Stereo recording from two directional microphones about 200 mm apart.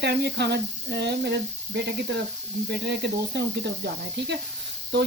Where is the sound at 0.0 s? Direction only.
55° right (ahead or behind).